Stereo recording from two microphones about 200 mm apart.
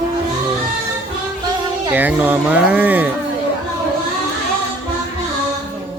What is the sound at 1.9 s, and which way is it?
Speech, 10° right (ahead or behind).